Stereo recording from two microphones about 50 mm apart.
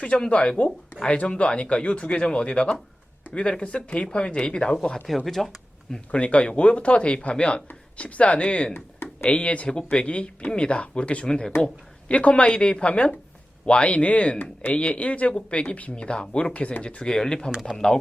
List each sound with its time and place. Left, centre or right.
0.3 s speech: left
5.0 s speech: centre
6.1 s speech: left
15.6 s speech: left; by 18.0 s centre